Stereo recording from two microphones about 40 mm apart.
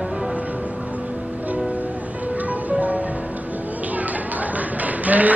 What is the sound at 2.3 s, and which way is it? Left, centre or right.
Music, right.